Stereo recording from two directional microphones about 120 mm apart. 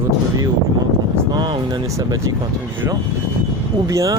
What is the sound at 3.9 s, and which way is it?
Speech, 25° right (ahead or behind).